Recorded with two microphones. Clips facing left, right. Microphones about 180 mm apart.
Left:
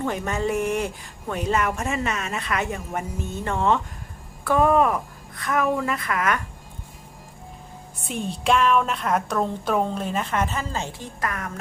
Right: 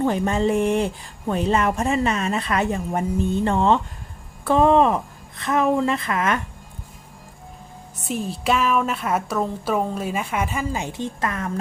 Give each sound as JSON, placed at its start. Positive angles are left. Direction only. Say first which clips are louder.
{"t": 0.0, "sound": "a woman's voice", "louder": "right 5 dB", "side_deg": -30}
{"t": 8.0, "sound": "a woman's voice", "louder": "right 1 dB", "side_deg": -5}